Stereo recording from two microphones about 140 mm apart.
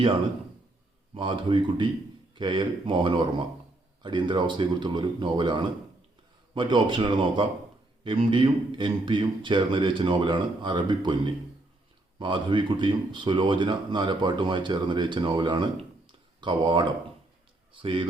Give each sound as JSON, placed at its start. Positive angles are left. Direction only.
{"t": 1.1, "sound": "speech", "side_deg": -35}